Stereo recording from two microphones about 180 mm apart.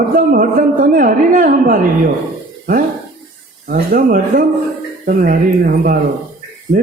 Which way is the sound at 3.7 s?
55° right (ahead or behind).